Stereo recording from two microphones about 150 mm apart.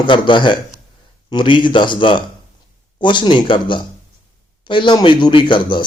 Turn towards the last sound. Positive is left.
turn(degrees=30)  # may be behind; listen again after turning